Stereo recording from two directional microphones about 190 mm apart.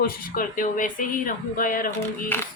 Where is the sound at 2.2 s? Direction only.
10° left (ahead or behind).